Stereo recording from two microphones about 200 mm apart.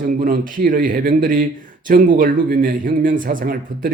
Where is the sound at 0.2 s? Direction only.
45° right (ahead or behind).